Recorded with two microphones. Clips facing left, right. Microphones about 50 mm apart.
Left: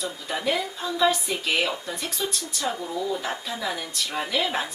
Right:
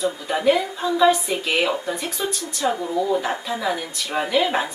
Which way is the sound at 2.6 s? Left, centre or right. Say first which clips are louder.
Right 7 dB; right.